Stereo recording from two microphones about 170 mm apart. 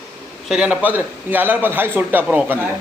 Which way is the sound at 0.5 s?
5° right (ahead or behind).